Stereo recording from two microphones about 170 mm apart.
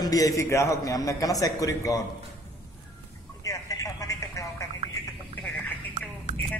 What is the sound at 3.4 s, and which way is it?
Telephone, 20° left (ahead or behind).